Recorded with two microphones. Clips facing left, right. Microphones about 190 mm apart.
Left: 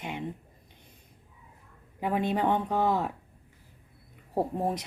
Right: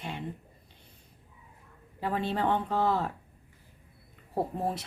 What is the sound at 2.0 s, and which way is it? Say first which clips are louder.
Speech: left 2 dB; 15° left (ahead or behind).